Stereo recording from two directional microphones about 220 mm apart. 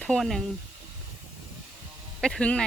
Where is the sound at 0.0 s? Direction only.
Centre (ahead or behind).